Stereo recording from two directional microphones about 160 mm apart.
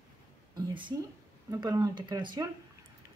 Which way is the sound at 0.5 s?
30° right (ahead or behind).